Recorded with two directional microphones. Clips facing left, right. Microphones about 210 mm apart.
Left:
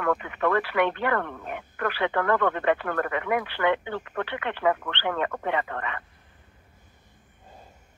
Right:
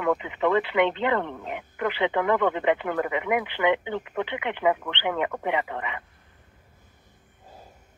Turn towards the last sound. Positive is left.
turn(degrees=-15)  # may be behind; listen again after turning